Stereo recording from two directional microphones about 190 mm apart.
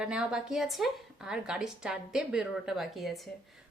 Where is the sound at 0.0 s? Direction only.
5° right (ahead or behind).